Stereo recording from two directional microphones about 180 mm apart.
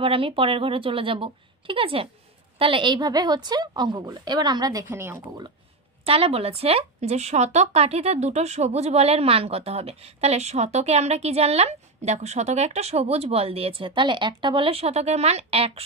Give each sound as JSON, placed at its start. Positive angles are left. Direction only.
{"t": 0.0, "sound": "a woman's voice", "side_deg": -30}
{"t": 6.0, "sound": "speech", "side_deg": -35}